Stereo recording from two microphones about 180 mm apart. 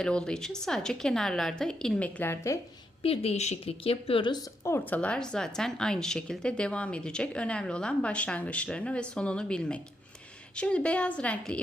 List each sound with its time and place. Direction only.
0.0 s speech: 5° left (ahead or behind)
3.0 s a woman's voice: 30° left (ahead or behind)
4.6 s a woman's voice: 10° left (ahead or behind)